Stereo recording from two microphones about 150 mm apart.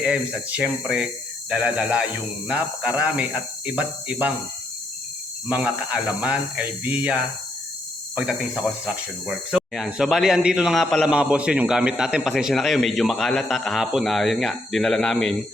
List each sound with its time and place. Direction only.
0.0 s speech: 5° right (ahead or behind)
5.5 s a man's voice: 10° right (ahead or behind)